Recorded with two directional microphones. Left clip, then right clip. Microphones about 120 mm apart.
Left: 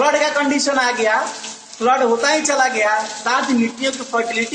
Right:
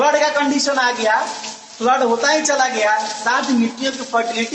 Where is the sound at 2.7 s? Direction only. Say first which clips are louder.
Even; 25° right (ahead or behind).